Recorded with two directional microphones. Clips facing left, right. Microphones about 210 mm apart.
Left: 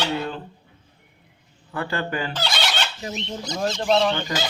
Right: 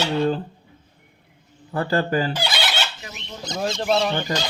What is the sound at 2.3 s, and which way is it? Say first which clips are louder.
Fowl: right 1 dB; 10° right (ahead or behind).